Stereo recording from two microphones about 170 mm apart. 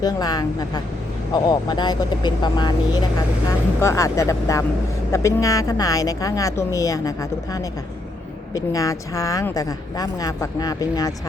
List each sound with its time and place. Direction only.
0.0 s a woman's voice: 25° left (ahead or behind)